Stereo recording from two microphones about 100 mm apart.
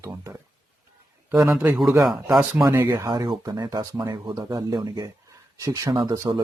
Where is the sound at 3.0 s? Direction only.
45° right (ahead or behind).